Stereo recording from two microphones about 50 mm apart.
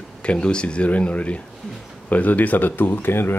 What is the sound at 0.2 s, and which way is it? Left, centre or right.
Speech, centre.